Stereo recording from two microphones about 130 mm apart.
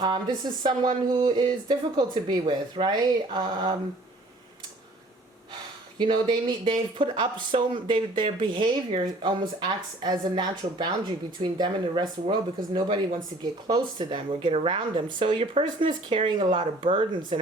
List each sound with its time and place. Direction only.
0.6 s speech: 35° right (ahead or behind)
6.0 s speech: 35° right (ahead or behind)